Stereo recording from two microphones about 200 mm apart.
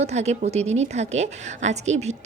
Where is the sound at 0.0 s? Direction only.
35° right (ahead or behind).